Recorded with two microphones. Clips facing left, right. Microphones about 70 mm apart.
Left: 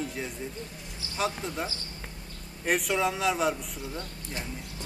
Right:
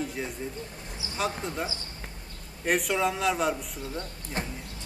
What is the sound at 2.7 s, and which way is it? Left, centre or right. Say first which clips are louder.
Speech: right 1 dB; centre.